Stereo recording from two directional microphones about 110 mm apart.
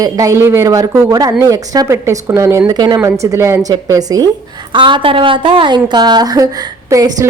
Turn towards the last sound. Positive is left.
turn(degrees=-30)  # may be behind; listen again after turning